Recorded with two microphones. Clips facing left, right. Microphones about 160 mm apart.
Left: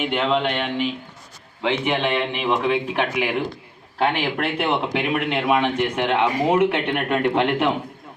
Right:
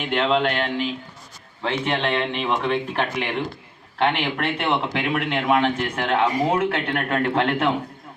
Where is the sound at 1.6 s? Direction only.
15° left (ahead or behind).